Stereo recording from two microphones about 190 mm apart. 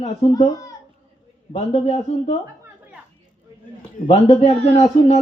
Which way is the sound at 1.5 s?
35° left (ahead or behind).